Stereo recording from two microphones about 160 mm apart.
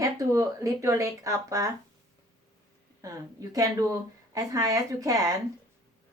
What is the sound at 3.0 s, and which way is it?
Speech, 20° right (ahead or behind).